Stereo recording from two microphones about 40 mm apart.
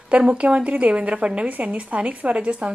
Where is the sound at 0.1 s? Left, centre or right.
Right.